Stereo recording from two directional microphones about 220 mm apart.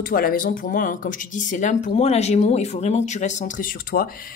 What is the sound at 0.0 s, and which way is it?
Speech, 40° left (ahead or behind).